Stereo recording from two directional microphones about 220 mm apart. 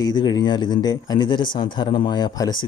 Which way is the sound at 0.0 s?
20° left (ahead or behind).